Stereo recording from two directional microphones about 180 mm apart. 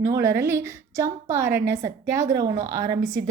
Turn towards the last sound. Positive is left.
turn(degrees=-20)  # may be behind; listen again after turning